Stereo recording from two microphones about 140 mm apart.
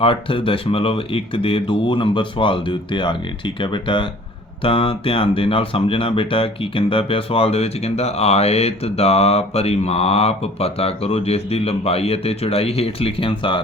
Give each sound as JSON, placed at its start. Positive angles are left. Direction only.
{"t": 0.0, "sound": "speech", "side_deg": 40}